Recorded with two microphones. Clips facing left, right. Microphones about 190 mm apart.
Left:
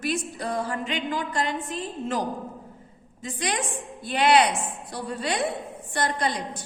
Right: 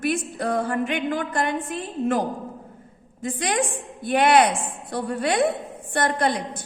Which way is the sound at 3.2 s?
55° right (ahead or behind).